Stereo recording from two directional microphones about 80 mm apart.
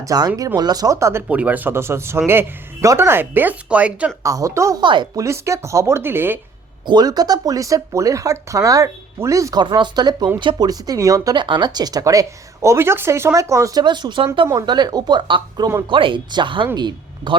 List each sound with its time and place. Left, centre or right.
0.0 s speech: right
1.3 s speech: centre
4.2 s speech: right
4.8 s speech: right
5.1 s speech: right
6.8 s speech: right
9.6 s speech: right
10.7 s speech: right
11.3 s speech: right
12.6 s speech: right
13.7 s speech: right
14.7 s speech: right
15.9 s speech: right
16.7 s speech: right